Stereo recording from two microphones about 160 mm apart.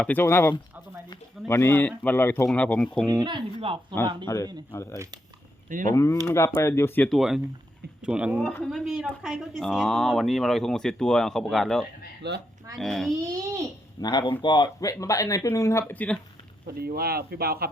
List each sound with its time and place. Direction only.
0.0 s a man's voice: 10° left (ahead or behind)
3.1 s speech: 25° right (ahead or behind)
4.7 s a man's voice: 15° left (ahead or behind)
5.6 s speech: 55° right (ahead or behind)
5.9 s a man's voice: 20° left (ahead or behind)
7.2 s speech: 5° right (ahead or behind)
13.2 s speech: 20° right (ahead or behind)
14.0 s speech: 25° left (ahead or behind); by 16.2 s 10° left (ahead or behind)
16.6 s speech: 75° right (ahead or behind)